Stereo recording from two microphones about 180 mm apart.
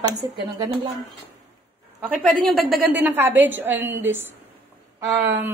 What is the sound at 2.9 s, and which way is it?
A woman's voice, 10° right (ahead or behind).